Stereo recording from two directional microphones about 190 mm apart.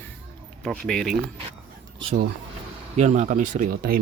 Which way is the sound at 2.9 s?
35° right (ahead or behind).